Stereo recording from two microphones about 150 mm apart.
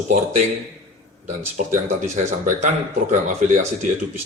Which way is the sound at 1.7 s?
55° right (ahead or behind).